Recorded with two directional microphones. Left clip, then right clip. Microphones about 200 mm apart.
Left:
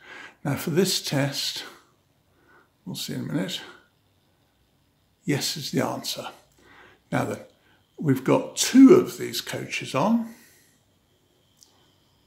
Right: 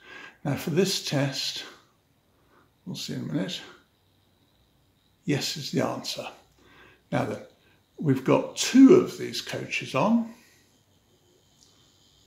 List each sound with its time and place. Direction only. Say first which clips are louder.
0.0 s speech: left 2 dB; 30° left (ahead or behind)
2.9 s speech: left 2 dB; 30° left (ahead or behind)
5.2 s speech: left 2 dB; 30° left (ahead or behind)